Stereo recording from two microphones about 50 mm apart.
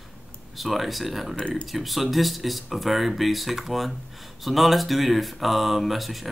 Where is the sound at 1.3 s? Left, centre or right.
Left.